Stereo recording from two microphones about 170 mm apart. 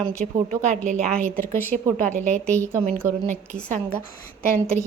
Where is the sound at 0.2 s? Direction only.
45° right (ahead or behind).